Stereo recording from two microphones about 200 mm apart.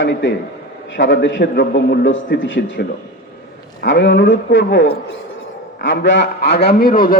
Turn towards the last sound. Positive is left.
turn(degrees=45)  # may be behind; listen again after turning